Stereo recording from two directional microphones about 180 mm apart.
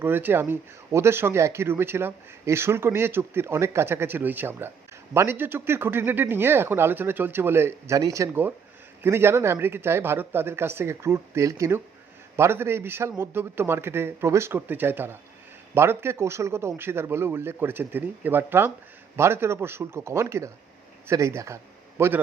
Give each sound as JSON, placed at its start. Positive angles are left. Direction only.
{"t": 0.0, "sound": "speech", "side_deg": -10}